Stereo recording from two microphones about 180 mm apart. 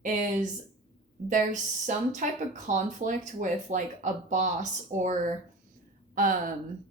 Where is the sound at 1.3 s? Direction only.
45° right (ahead or behind).